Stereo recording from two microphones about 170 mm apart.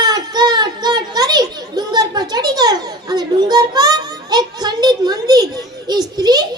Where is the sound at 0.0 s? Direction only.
25° right (ahead or behind).